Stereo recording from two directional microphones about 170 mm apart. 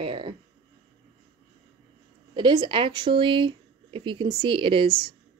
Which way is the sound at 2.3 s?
25° right (ahead or behind).